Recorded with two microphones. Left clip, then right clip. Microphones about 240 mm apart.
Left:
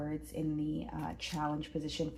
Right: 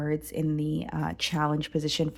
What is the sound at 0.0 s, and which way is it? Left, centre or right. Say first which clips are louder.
Speech: right 8 dB; right.